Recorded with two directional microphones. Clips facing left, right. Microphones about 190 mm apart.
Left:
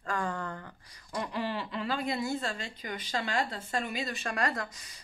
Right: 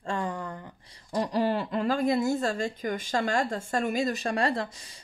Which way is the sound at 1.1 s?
35° right (ahead or behind).